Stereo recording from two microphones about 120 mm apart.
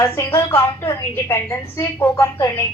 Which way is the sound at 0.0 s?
20° left (ahead or behind).